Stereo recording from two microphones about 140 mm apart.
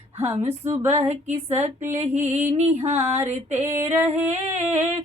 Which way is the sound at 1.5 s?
15° right (ahead or behind).